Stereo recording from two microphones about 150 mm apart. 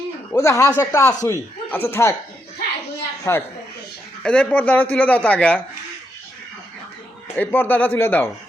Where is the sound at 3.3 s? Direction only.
15° left (ahead or behind).